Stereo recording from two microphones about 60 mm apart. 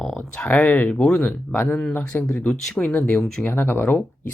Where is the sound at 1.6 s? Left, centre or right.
Left.